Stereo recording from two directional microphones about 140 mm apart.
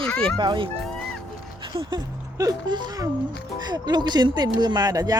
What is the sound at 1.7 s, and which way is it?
Speech, 35° right (ahead or behind).